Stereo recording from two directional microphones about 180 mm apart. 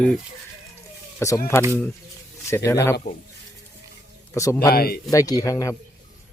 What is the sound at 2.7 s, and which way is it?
Speech, 15° left (ahead or behind).